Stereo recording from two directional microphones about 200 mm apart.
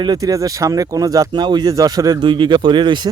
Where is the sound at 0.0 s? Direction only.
20° right (ahead or behind).